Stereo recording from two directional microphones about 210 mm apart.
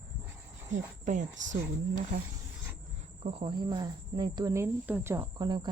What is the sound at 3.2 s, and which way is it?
Speech, 25° right (ahead or behind).